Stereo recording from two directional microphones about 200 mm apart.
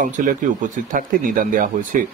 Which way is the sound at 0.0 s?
40° right (ahead or behind).